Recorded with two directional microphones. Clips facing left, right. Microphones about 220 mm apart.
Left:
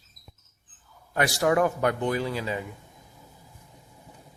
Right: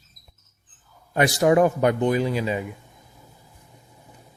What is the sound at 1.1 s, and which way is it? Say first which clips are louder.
A man's voice: right 5 dB; 20° right (ahead or behind).